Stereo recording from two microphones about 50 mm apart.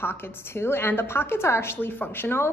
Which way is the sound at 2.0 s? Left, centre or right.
Left.